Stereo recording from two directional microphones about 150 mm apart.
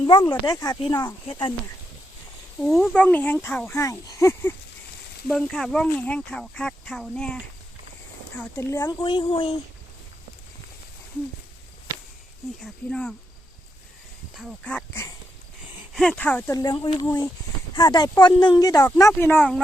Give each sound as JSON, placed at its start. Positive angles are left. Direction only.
{"t": 0.0, "sound": "speech", "side_deg": 35}
{"t": 2.6, "sound": "speech", "side_deg": 0}
{"t": 5.3, "sound": "speech", "side_deg": 0}
{"t": 8.4, "sound": "speech", "side_deg": 15}
{"t": 8.9, "sound": "speech", "side_deg": 30}
{"t": 12.6, "sound": "speech", "side_deg": 5}
{"t": 14.3, "sound": "speech", "side_deg": 0}
{"t": 14.7, "sound": "speech", "side_deg": 10}
{"t": 16.6, "sound": "speech", "side_deg": 30}